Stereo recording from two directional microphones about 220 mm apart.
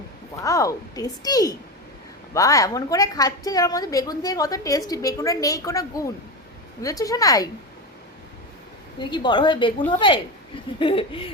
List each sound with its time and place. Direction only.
0.4 s a woman's voice: 15° left (ahead or behind)
9.0 s a woman's voice: 20° left (ahead or behind)